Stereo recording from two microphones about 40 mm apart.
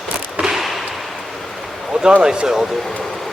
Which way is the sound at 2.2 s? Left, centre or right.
Right.